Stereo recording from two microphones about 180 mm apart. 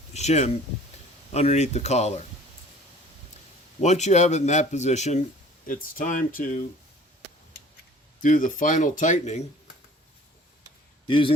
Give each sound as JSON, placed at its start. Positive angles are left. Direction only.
{"t": 0.1, "sound": "speech", "side_deg": 40}
{"t": 3.8, "sound": "speech", "side_deg": 40}
{"t": 8.2, "sound": "speech", "side_deg": 45}
{"t": 11.0, "sound": "a man's voice", "side_deg": 30}